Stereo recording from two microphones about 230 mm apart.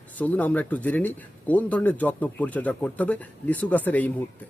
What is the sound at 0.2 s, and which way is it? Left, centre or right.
Speech, centre.